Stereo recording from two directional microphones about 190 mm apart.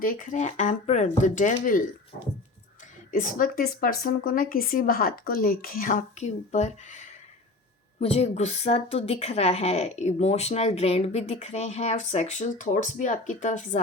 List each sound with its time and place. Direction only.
0.0 s a woman's voice: 45° left (ahead or behind)
3.1 s a woman's voice: 45° left (ahead or behind)